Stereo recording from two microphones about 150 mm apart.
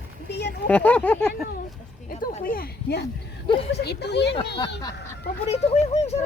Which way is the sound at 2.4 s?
80° left.